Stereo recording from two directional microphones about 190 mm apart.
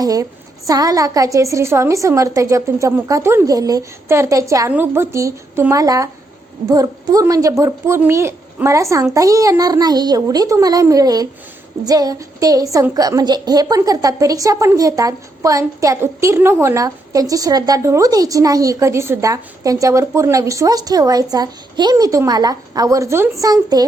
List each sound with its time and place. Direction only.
0.0 s a child's voice: 20° right (ahead or behind)